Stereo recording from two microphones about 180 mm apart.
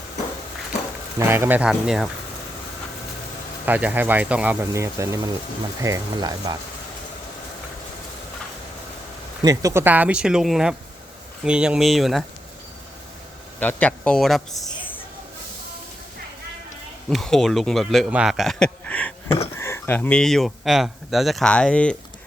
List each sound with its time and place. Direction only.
1.3 s speech: 10° right (ahead or behind)
3.7 s speech: 10° right (ahead or behind)
9.4 s speech: 20° right (ahead or behind); by 12.2 s centre (ahead or behind)
13.6 s a man's voice: 10° left (ahead or behind)
17.1 s speech: centre (ahead or behind)